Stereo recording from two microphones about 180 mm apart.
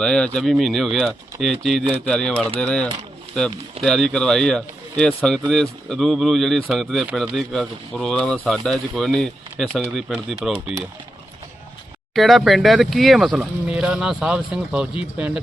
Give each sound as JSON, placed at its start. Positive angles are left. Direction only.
{"t": 0.0, "sound": "speech", "side_deg": 5}
{"t": 12.1, "sound": "speech", "side_deg": 0}